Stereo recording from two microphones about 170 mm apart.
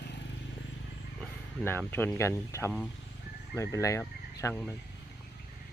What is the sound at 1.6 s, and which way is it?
Speech, 10° left (ahead or behind).